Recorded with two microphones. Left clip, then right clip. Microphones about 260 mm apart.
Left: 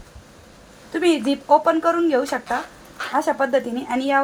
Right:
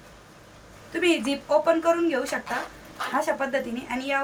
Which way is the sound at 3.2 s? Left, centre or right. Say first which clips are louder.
Left 7 dB; centre.